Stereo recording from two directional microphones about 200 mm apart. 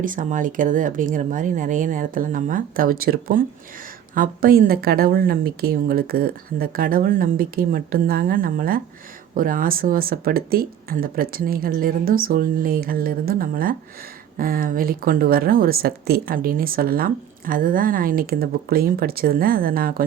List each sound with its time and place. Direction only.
0.0 s speech: 40° right (ahead or behind)